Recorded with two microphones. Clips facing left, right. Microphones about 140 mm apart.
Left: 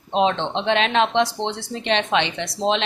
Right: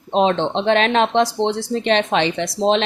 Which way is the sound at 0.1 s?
40° right (ahead or behind).